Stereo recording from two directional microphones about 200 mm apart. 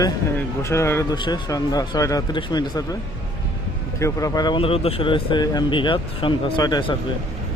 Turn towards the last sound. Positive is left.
turn(degrees=20)  # may be behind; listen again after turning